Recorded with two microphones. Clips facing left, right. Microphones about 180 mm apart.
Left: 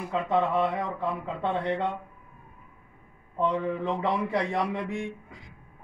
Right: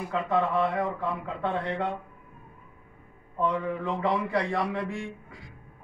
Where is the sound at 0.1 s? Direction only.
20° left (ahead or behind).